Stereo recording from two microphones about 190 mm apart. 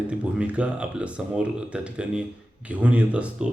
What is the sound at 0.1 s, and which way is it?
Speech, 5° right (ahead or behind).